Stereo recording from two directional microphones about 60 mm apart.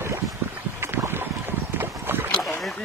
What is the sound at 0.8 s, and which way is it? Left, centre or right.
Boat, right.